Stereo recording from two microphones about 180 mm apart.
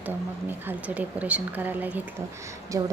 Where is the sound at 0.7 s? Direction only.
10° right (ahead or behind).